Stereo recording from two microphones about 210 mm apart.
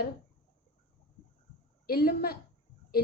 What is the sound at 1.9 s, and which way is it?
Speech, 45° left (ahead or behind).